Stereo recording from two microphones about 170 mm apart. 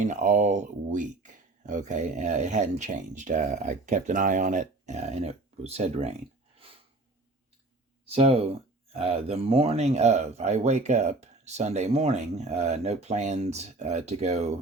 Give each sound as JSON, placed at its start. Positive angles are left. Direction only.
{"t": 0.0, "sound": "speech", "side_deg": -45}
{"t": 8.0, "sound": "speech", "side_deg": -35}